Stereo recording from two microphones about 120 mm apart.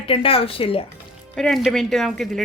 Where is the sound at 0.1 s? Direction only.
50° left (ahead or behind).